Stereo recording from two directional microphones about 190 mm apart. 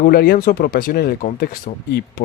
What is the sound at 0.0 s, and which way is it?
Speech, 55° left (ahead or behind).